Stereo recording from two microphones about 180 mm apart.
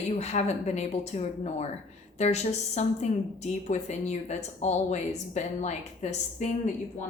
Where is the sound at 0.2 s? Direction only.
35° left (ahead or behind).